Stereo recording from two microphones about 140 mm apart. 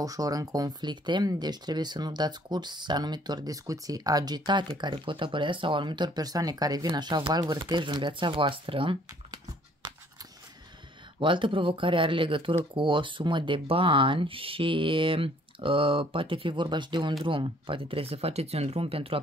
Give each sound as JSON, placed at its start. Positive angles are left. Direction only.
{"t": 0.0, "sound": "speech", "side_deg": -25}
{"t": 11.1, "sound": "speech", "side_deg": -35}